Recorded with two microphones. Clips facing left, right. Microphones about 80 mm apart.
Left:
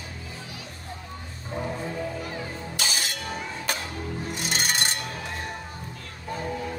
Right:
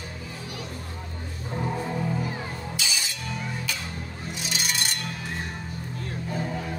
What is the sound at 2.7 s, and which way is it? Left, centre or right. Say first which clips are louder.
Music: left 2 dB; left.